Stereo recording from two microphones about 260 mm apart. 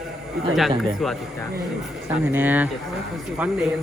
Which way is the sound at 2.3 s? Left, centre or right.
Centre.